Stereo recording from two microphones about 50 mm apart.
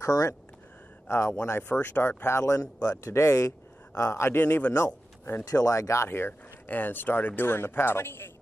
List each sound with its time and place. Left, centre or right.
0.0 s speech: left
1.0 s speech: left
1.6 s speech: left
2.2 s a man's voice: left
4.0 s a man's voice: left
4.4 s speech: left
4.7 s speech: left
6.0 s speech: left
7.4 s a man's voice: left